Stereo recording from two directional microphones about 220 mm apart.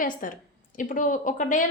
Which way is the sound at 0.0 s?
40° left (ahead or behind).